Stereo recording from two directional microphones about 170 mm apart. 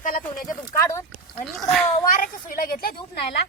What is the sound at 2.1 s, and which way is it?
A woman's voice, 55° left (ahead or behind).